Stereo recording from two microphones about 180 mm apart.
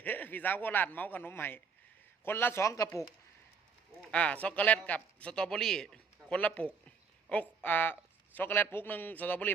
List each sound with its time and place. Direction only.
0.0 s a man's voice: 10° left (ahead or behind)
4.1 s a man's voice: 5° left (ahead or behind)